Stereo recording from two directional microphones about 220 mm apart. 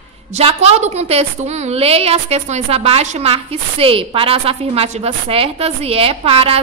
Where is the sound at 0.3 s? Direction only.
30° right (ahead or behind).